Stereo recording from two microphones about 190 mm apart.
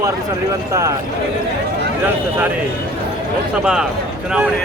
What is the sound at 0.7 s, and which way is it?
Speech, 15° right (ahead or behind).